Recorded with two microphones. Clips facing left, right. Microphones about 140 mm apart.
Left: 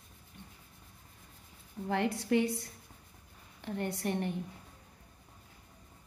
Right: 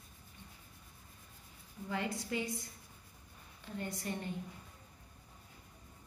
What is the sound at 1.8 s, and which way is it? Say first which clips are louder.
A woman's voice: left 7 dB; 65° left (ahead or behind).